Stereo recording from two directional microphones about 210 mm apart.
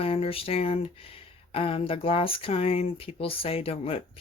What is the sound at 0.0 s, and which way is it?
Speech, 25° left (ahead or behind).